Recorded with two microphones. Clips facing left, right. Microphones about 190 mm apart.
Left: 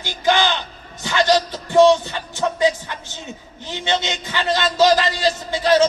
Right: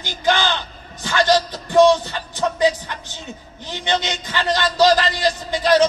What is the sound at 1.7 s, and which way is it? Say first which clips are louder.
Music: even; 15° left (ahead or behind).